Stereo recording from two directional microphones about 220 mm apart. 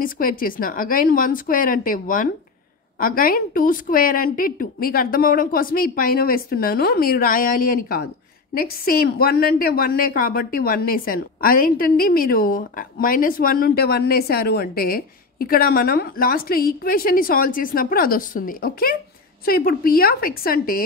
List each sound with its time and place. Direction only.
0.0 s a woman's voice: 40° left (ahead or behind)